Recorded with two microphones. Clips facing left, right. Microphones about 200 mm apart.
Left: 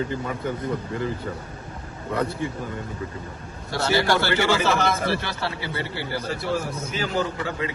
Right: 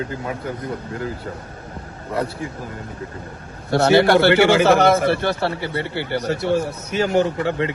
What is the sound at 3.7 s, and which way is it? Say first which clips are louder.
A man's voice: right 8 dB; 65° right (ahead or behind).